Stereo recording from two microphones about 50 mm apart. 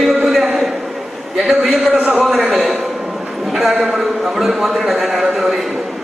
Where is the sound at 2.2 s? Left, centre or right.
Centre.